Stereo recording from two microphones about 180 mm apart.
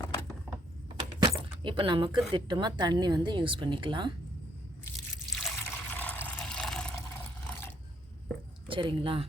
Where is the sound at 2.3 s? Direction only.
25° right (ahead or behind).